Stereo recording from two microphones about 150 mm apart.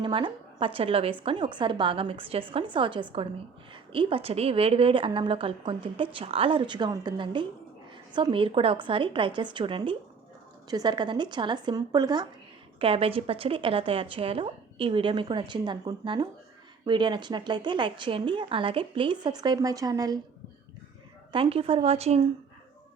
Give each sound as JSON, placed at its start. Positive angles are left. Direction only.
{"t": 0.0, "sound": "a woman's voice", "side_deg": -35}
{"t": 12.8, "sound": "a woman's voice", "side_deg": -40}
{"t": 21.3, "sound": "a woman's voice", "side_deg": -40}